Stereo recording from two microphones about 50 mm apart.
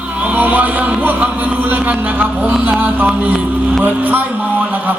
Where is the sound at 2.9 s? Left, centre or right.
Right.